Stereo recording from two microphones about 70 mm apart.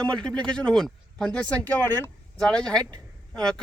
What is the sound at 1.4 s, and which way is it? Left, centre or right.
Speech, left.